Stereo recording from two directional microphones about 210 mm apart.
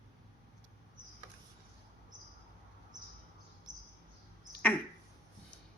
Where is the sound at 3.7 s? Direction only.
35° right (ahead or behind).